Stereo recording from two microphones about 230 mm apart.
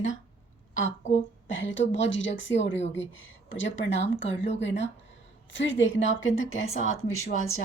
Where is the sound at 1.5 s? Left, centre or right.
Left.